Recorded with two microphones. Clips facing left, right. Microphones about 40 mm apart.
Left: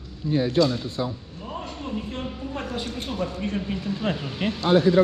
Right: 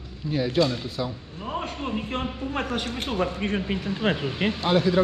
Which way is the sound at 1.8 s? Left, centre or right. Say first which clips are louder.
Right 2 dB; right.